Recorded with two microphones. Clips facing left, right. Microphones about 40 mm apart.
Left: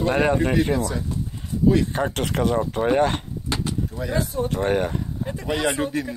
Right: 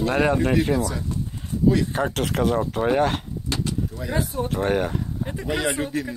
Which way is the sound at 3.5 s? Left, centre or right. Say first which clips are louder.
Even; centre.